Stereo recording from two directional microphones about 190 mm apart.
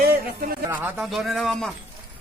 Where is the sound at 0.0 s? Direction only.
50° right (ahead or behind).